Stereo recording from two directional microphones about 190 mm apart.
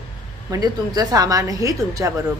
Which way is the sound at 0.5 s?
20° right (ahead or behind).